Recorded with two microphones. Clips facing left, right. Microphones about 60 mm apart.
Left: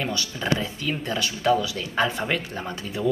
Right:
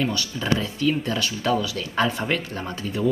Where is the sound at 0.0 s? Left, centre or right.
Centre.